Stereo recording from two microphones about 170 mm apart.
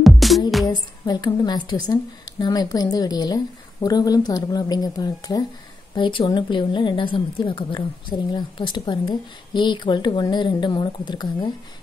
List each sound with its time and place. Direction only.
0.0 s music: centre (ahead or behind)
0.7 s a woman's voice: 25° left (ahead or behind)